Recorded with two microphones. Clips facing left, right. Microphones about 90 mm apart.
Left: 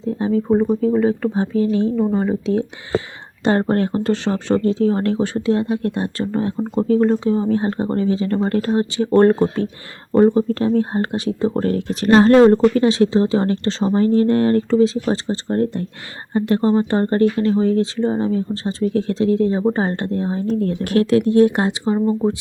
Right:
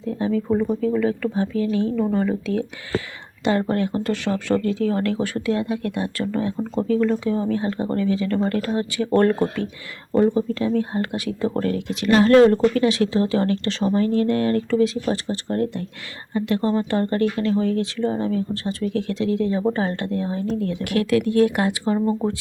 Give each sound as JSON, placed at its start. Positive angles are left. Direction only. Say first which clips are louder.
{"t": 0.0, "sound": "speech", "louder": "left 3 dB", "side_deg": 30}
{"t": 3.4, "sound": "speech", "louder": "left 4 dB", "side_deg": 40}
{"t": 3.9, "sound": "speech", "louder": "left 4 dB", "side_deg": 30}
{"t": 10.2, "sound": "speech", "louder": "left 4 dB", "side_deg": 40}
{"t": 11.6, "sound": "speech", "louder": "left 4 dB", "side_deg": 40}